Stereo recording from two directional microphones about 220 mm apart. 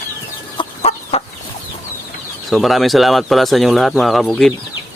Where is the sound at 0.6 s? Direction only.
25° left (ahead or behind).